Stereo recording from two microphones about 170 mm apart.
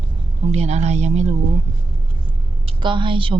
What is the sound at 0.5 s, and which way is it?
Speech, 40° right (ahead or behind).